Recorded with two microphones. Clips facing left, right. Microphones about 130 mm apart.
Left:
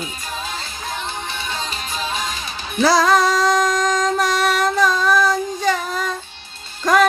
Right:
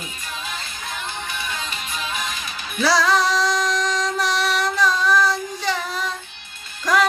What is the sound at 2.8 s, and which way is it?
Music, 50° left (ahead or behind).